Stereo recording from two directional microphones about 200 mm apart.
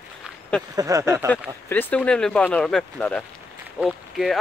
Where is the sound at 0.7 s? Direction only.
15° right (ahead or behind).